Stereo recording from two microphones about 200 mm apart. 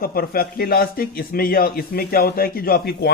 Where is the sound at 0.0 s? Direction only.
50° left (ahead or behind).